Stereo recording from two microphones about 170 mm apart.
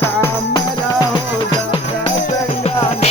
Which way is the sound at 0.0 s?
15° left (ahead or behind).